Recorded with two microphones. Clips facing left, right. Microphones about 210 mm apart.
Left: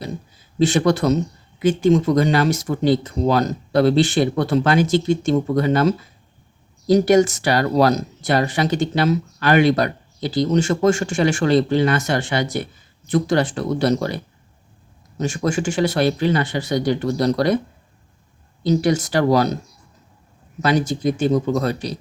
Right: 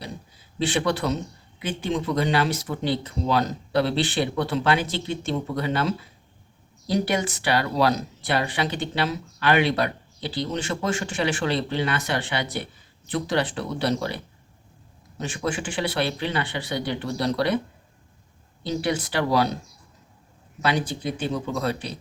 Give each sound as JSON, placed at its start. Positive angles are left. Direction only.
{"t": 0.6, "sound": "speech", "side_deg": 45}
{"t": 15.2, "sound": "speech", "side_deg": 45}
{"t": 18.6, "sound": "speech", "side_deg": 45}
{"t": 20.6, "sound": "speech", "side_deg": 45}